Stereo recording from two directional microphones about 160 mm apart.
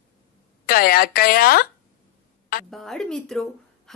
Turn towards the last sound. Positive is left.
turn(degrees=5)  # may be behind; listen again after turning